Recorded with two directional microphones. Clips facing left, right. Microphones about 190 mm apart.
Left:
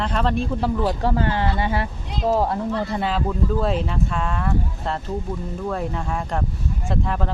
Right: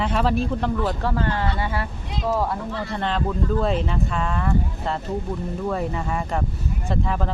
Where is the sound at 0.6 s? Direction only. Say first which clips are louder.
Left 2 dB; 10° left (ahead or behind).